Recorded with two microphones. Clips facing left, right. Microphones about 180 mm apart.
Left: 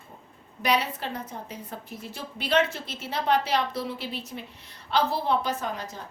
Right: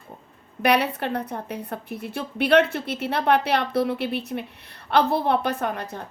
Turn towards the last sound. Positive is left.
turn(degrees=-60)  # may be behind; listen again after turning